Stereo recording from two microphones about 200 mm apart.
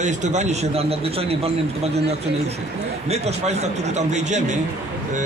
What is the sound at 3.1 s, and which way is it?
A man's voice, 35° right (ahead or behind).